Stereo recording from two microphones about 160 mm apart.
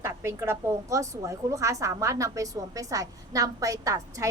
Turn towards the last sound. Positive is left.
turn(degrees=-20)  # may be behind; listen again after turning